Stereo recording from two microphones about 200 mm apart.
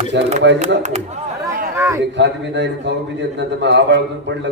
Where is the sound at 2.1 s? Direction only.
60° right (ahead or behind).